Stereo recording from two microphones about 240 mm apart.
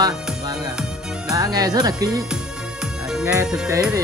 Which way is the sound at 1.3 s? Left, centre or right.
Centre.